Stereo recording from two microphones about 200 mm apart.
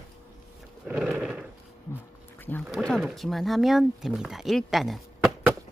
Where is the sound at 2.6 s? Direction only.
Centre (ahead or behind).